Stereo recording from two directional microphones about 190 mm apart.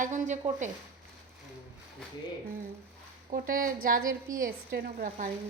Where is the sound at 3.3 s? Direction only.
50° right (ahead or behind).